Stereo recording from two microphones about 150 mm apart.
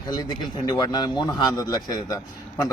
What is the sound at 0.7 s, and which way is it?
Speech, 30° left (ahead or behind).